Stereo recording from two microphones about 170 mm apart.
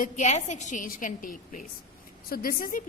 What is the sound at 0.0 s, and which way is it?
A woman's voice, 45° left (ahead or behind).